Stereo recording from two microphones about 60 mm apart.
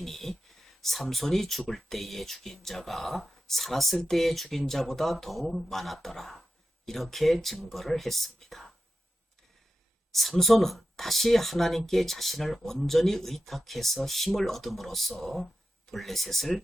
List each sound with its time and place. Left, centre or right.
0.0 s speech: centre
10.1 s speech: centre